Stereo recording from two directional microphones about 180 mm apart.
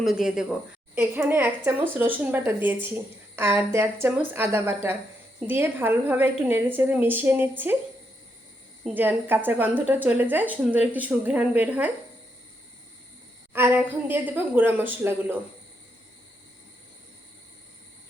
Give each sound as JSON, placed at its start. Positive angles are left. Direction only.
{"t": 0.0, "sound": "a woman's voice", "side_deg": 0}
{"t": 8.8, "sound": "a woman's voice", "side_deg": -10}
{"t": 13.5, "sound": "a woman's voice", "side_deg": -10}